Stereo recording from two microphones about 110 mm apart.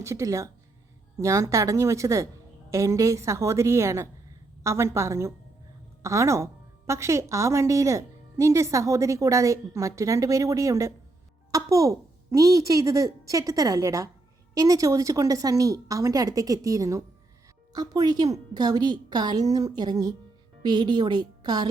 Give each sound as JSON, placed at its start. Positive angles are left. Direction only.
{"t": 0.0, "sound": "a woman's voice", "side_deg": -30}